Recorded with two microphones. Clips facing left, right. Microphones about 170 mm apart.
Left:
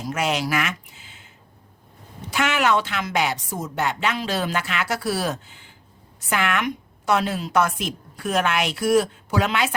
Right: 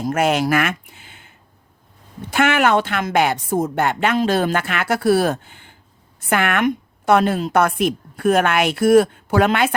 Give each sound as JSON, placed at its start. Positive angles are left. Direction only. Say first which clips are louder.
{"t": 0.0, "sound": "speech", "louder": "right 6 dB", "side_deg": -50}
{"t": 2.3, "sound": "a woman's voice", "louder": "right 5 dB", "side_deg": -55}